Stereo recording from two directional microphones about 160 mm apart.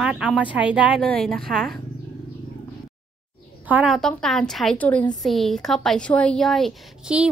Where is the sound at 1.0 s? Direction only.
5° left (ahead or behind).